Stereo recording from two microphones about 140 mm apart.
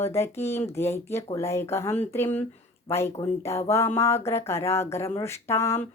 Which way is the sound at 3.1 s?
45° left (ahead or behind).